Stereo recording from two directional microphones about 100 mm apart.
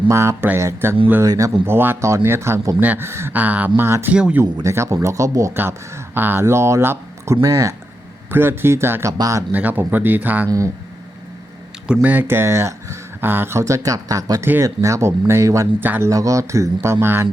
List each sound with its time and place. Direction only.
0.1 s speech: 30° right (ahead or behind)
1.6 s speech: 20° right (ahead or behind)
2.7 s speech: 15° right (ahead or behind)
4.1 s speech: 10° right (ahead or behind)
4.6 s speech: 30° right (ahead or behind)
9.1 s speech: 40° right (ahead or behind)
9.5 s speech: 15° right (ahead or behind)
12.0 s speech: 20° right (ahead or behind)
16.0 s speech: 35° right (ahead or behind)